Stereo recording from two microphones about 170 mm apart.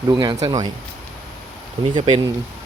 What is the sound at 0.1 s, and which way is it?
Speech, 25° right (ahead or behind).